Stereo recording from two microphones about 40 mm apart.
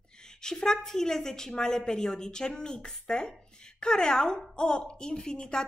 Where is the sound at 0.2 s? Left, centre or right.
Centre.